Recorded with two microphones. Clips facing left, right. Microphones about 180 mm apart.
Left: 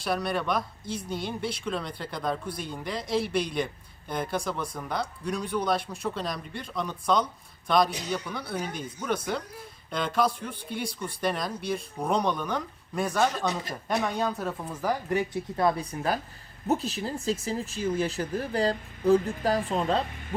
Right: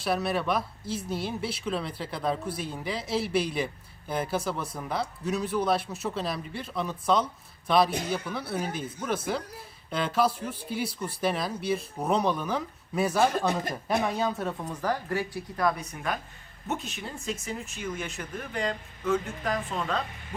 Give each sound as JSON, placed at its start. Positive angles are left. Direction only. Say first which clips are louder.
{"t": 0.0, "sound": "speech", "louder": "right 1 dB", "side_deg": -5}
{"t": 7.9, "sound": "speech", "louder": "right 4 dB", "side_deg": -50}
{"t": 8.1, "sound": "speech", "louder": "right 1 dB", "side_deg": -5}
{"t": 13.3, "sound": "speech", "louder": "right 3 dB", "side_deg": -55}
{"t": 13.8, "sound": "speech", "louder": "even", "side_deg": -5}
{"t": 14.7, "sound": "speech", "louder": "left 3 dB", "side_deg": 10}